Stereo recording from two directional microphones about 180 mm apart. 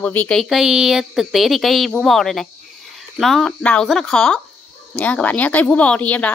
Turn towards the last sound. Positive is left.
turn(degrees=10)  # may be behind; listen again after turning